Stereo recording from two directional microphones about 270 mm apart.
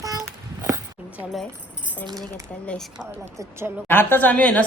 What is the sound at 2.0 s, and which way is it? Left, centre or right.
Speech, centre.